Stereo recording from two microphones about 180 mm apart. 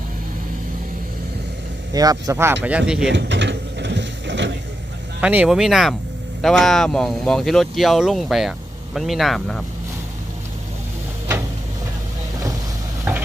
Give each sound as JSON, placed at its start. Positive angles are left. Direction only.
{"t": 1.9, "sound": "speech", "side_deg": -20}
{"t": 3.1, "sound": "mechanisms", "side_deg": -80}
{"t": 5.2, "sound": "speech", "side_deg": -5}
{"t": 13.1, "sound": "a sound", "side_deg": -10}